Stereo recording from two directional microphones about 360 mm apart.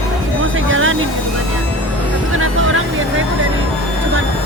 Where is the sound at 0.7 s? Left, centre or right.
Right.